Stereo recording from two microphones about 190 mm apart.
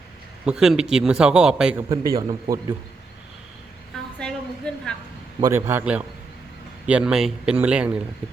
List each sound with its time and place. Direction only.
0.4 s a man's voice: 5° right (ahead or behind)
1.9 s a man's voice: 20° right (ahead or behind)
4.2 s a sound: 5° left (ahead or behind)
5.4 s a man's voice: 15° right (ahead or behind)